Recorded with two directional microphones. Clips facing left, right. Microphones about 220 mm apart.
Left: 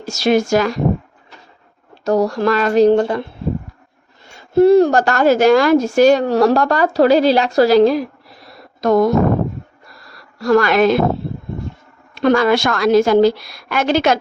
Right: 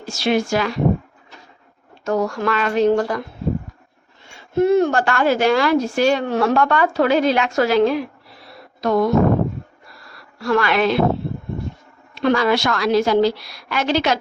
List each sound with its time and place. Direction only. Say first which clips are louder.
0.0 s a woman's voice: left 4 dB; 40° left (ahead or behind)
2.0 s a woman's voice: left 5 dB; 35° left (ahead or behind)
2.9 s speech: left 4 dB; 25° left (ahead or behind)
4.4 s a woman's voice: left 6 dB; 35° left (ahead or behind)
10.1 s a sound: left 6 dB; 40° left (ahead or behind)
12.1 s a woman's voice: left 4 dB; 45° left (ahead or behind)